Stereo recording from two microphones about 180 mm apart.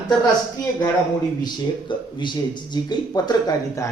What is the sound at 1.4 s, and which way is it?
A man's voice, 25° left (ahead or behind).